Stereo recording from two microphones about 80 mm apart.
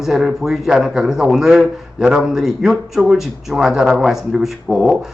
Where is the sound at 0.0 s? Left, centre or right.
Centre.